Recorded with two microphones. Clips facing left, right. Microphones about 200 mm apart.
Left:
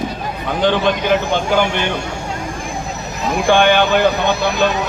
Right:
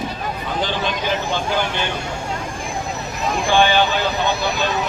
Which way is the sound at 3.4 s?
55° left (ahead or behind).